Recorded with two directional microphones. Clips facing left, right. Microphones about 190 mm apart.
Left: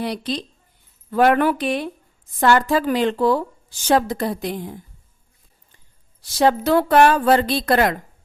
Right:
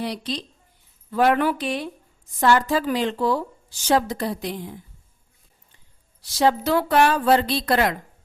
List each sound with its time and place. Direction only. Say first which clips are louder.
0.0 s a woman's voice: left 3 dB; 55° left (ahead or behind)
6.2 s speech: left 3 dB; 50° left (ahead or behind)